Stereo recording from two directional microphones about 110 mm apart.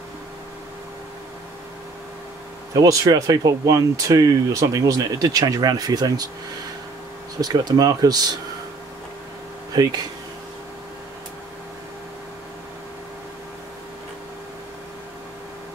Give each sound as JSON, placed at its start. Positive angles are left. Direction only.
{"t": 2.7, "sound": "speech", "side_deg": -30}
{"t": 7.3, "sound": "speech", "side_deg": -35}
{"t": 9.7, "sound": "speech", "side_deg": -35}